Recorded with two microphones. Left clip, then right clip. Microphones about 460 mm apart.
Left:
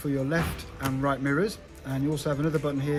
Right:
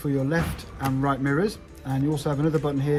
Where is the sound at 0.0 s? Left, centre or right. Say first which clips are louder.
Right 2 dB; centre.